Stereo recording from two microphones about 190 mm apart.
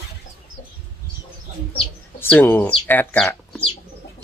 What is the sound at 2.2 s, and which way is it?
Speech, 10° left (ahead or behind).